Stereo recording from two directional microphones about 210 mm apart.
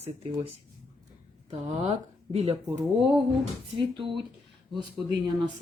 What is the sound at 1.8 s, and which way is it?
Speech, 30° right (ahead or behind).